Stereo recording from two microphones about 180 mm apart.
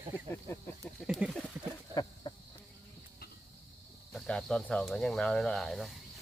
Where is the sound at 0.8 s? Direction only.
Centre (ahead or behind).